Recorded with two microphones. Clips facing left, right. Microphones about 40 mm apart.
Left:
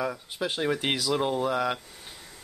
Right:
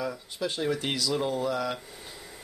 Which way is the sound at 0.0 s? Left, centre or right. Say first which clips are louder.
Left 2 dB; left.